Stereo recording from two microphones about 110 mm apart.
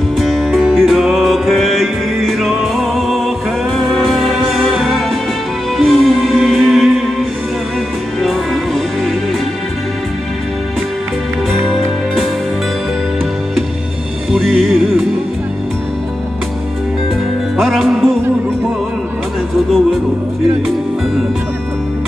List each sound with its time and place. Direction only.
0.2 s music: centre (ahead or behind)
8.2 s music: centre (ahead or behind)
11.5 s music: centre (ahead or behind)
14.3 s music: centre (ahead or behind)
17.6 s music: centre (ahead or behind)